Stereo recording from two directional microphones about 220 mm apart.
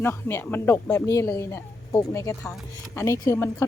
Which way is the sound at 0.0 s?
10° left (ahead or behind).